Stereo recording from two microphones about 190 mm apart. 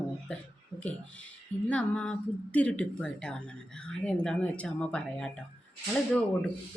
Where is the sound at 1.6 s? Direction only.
5° left (ahead or behind).